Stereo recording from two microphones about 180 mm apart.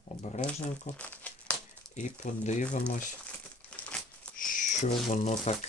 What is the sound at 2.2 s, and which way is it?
Speech, 45° left (ahead or behind).